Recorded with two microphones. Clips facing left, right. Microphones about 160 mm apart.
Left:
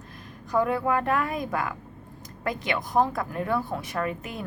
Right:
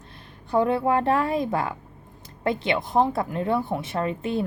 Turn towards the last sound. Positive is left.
turn(degrees=-30)  # may be behind; listen again after turning